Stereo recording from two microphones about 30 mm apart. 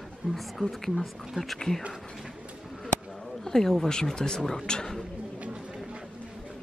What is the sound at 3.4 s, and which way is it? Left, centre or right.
Speech, centre.